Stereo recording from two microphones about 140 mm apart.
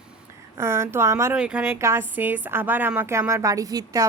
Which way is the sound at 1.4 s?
10° right (ahead or behind).